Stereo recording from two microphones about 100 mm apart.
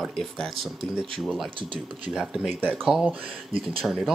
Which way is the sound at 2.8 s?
5° right (ahead or behind).